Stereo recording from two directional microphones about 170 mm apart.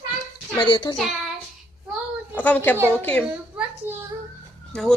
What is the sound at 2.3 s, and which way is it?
Speech, 10° left (ahead or behind).